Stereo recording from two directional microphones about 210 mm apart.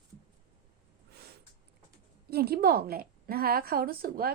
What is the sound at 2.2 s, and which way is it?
A woman's voice, 50° right (ahead or behind).